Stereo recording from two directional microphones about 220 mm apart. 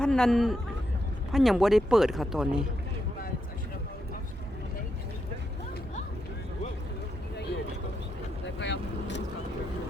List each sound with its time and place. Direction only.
0.0 s speech: 5° left (ahead or behind)
8.5 s vehicle: 55° left (ahead or behind)